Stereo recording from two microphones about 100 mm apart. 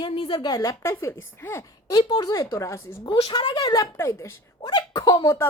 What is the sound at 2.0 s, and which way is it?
Speech, 55° left (ahead or behind).